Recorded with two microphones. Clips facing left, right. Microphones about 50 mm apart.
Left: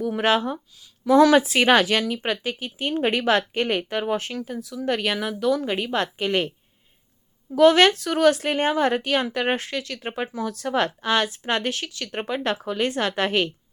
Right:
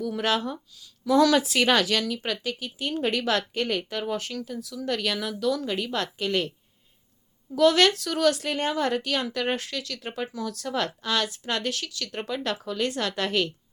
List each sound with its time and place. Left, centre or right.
0.0 s a woman's voice: left
7.5 s a woman's voice: left